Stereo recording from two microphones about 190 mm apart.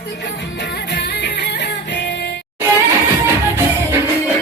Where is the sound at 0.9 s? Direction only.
60° left (ahead or behind).